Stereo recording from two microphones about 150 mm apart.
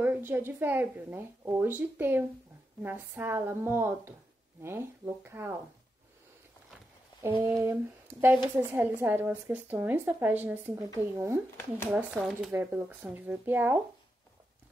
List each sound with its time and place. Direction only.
0.0 s a woman's voice: 15° right (ahead or behind)
7.4 s a woman's voice: 15° right (ahead or behind)
11.9 s a woman's voice: 5° right (ahead or behind)